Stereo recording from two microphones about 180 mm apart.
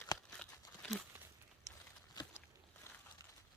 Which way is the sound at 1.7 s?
20° right (ahead or behind).